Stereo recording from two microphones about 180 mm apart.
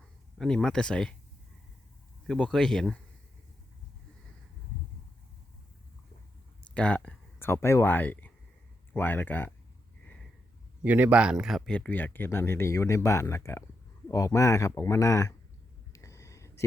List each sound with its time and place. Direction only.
0.3 s speech: 5° left (ahead or behind)
2.2 s speech: 5° left (ahead or behind)
6.7 s speech: 5° left (ahead or behind)
10.8 s speech: 10° right (ahead or behind); by 15.4 s 15° left (ahead or behind)
15.9 s a sound: 15° left (ahead or behind)